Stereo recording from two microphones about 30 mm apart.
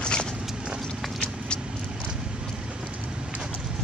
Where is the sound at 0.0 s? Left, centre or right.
Left.